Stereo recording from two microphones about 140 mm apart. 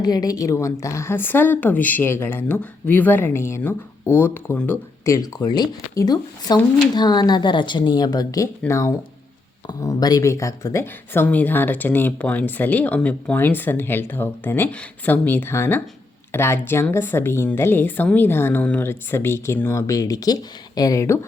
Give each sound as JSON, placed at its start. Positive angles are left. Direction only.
{"t": 0.0, "sound": "speech", "side_deg": 30}
{"t": 5.0, "sound": "speech", "side_deg": 25}